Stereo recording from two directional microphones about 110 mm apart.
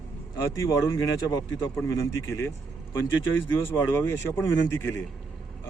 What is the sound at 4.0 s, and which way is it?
Speech, 25° left (ahead or behind).